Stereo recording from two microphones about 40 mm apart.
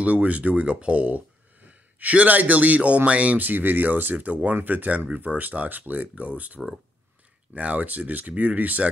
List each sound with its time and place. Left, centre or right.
0.0 s speech: right
3.3 s speech: right
5.4 s speech: right